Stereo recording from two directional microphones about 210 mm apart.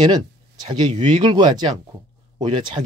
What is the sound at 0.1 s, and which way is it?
Speech, 20° right (ahead or behind).